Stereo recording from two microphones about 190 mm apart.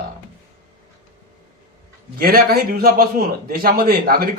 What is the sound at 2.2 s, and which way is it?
A man's voice, 50° right (ahead or behind).